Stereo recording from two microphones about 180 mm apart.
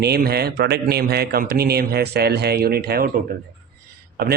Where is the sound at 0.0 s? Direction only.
60° right (ahead or behind).